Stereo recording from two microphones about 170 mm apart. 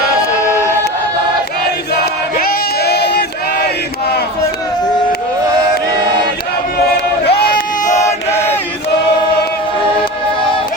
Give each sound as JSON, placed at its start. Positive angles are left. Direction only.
{"t": 1.9, "sound": "music", "side_deg": 60}
{"t": 7.3, "sound": "a sound", "side_deg": 65}
{"t": 8.0, "sound": "chant", "side_deg": 15}